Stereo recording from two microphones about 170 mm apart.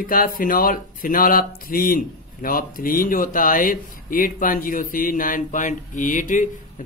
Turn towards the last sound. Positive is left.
turn(degrees=50)  # may be behind; listen again after turning